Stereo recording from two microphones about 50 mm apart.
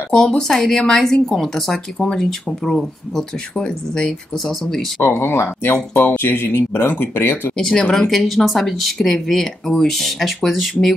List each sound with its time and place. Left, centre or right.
0.1 s a woman's voice: centre
5.1 s speech: left
7.5 s a woman's voice: centre
8.1 s speech: centre